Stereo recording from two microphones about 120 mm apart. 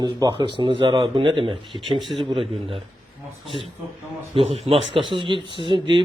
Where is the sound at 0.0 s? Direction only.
40° right (ahead or behind).